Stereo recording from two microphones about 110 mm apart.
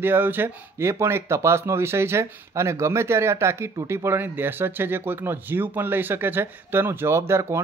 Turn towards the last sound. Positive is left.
turn(degrees=-25)  # may be behind; listen again after turning